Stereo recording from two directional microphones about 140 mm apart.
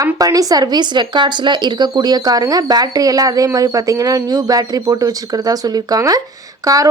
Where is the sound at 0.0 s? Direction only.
25° right (ahead or behind).